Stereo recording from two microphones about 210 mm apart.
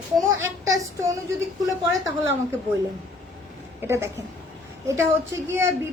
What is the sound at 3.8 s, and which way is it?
Speech, 10° right (ahead or behind).